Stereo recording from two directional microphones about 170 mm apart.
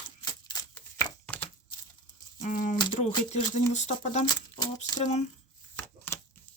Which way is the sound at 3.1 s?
25° left (ahead or behind).